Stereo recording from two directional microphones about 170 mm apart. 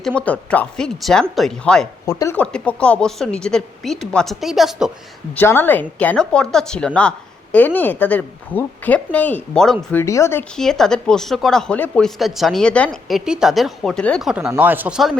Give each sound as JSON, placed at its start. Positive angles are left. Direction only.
{"t": 0.2, "sound": "a woman's voice", "side_deg": 10}
{"t": 2.0, "sound": "a woman's voice", "side_deg": 15}
{"t": 5.3, "sound": "a woman's voice", "side_deg": 10}
{"t": 10.5, "sound": "a woman's voice", "side_deg": 5}